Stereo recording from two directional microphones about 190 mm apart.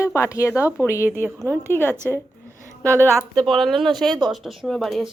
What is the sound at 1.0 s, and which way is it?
Speech, 10° right (ahead or behind).